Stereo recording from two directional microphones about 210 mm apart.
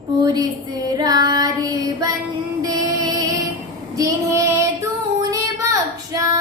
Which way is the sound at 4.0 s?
15° right (ahead or behind).